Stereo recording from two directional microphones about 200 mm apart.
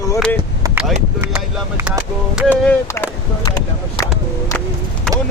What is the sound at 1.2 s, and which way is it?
Speech, 10° right (ahead or behind).